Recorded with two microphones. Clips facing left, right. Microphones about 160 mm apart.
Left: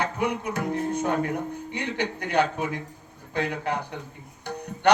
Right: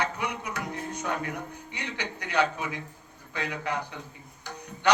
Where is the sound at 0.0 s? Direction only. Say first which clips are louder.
Left 5 dB; 55° left (ahead or behind).